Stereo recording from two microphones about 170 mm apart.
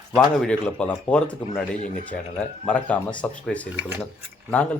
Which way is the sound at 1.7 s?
50° left (ahead or behind).